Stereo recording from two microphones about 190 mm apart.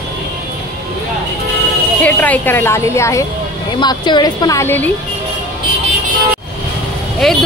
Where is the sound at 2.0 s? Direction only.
10° left (ahead or behind).